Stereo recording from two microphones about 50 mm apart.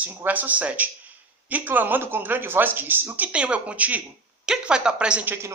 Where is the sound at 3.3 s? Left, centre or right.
Right.